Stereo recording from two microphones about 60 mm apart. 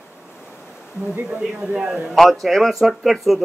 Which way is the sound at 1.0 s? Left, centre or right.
Right.